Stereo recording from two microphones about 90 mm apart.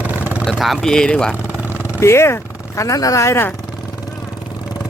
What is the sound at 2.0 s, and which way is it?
Speech, 30° left (ahead or behind).